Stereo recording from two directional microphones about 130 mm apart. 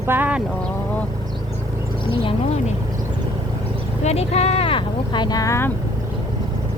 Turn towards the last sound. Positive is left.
turn(degrees=20)  # may be behind; listen again after turning